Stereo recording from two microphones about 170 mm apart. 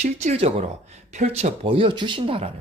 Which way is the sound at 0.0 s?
40° right (ahead or behind).